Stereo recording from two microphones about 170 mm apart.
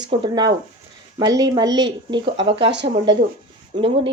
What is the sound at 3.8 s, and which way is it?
Speech, 30° right (ahead or behind).